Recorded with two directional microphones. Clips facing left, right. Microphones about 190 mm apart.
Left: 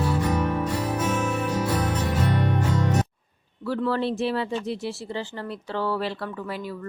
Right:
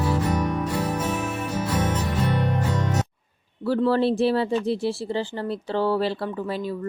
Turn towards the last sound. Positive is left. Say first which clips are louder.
# right 4 dB
turn(degrees=-30)  # may be behind; listen again after turning